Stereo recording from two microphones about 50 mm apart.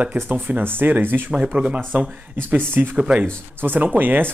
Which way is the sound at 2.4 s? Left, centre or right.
Right.